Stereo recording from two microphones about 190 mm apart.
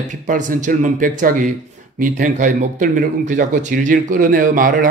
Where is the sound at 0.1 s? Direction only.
40° right (ahead or behind).